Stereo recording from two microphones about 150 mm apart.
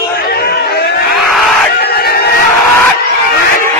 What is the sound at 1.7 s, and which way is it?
Crowd, 90° left.